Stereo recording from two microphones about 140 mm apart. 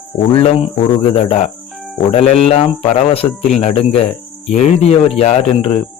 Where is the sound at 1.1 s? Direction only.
45° left (ahead or behind).